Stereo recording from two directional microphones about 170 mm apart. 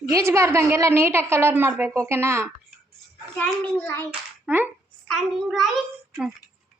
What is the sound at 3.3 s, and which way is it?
Speech, 5° left (ahead or behind).